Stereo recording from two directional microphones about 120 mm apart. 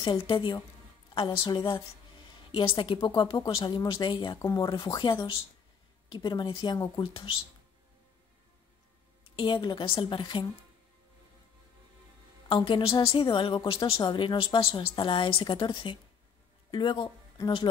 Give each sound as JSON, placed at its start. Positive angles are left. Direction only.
{"t": 0.0, "sound": "a woman's voice", "side_deg": 45}
{"t": 3.0, "sound": "speech", "side_deg": 35}
{"t": 9.3, "sound": "a woman's voice", "side_deg": 45}
{"t": 12.4, "sound": "a woman's voice", "side_deg": 45}